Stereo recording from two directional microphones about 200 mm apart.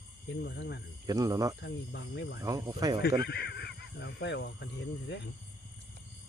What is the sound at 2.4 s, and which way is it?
Speech, 15° right (ahead or behind).